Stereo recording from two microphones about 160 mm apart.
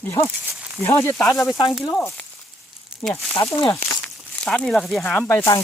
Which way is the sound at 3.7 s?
15° left (ahead or behind).